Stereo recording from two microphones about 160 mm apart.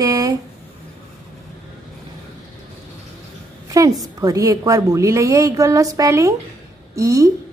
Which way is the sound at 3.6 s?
20° right (ahead or behind).